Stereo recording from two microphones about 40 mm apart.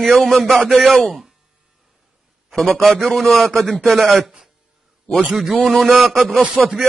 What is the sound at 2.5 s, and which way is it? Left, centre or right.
A man's voice, centre.